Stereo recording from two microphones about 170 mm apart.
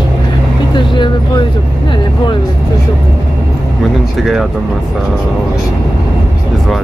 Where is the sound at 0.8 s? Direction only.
25° left (ahead or behind).